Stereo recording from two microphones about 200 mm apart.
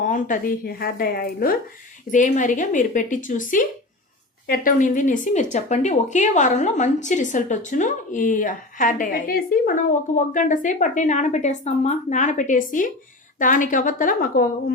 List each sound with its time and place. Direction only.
0.0 s a woman's voice: 40° left (ahead or behind)